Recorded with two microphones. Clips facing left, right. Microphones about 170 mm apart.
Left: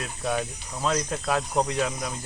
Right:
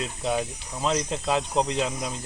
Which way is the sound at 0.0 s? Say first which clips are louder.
Right 1 dB; 20° right (ahead or behind).